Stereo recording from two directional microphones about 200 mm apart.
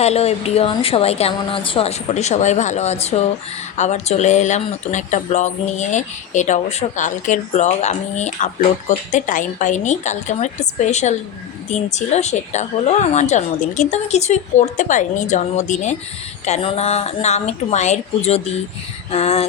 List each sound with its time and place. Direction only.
0.0 s speech: 30° left (ahead or behind)